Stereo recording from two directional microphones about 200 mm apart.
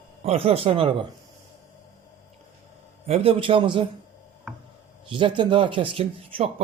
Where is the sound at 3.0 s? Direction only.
30° right (ahead or behind).